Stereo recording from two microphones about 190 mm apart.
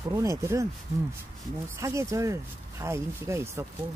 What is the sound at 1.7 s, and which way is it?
Speech, 15° right (ahead or behind).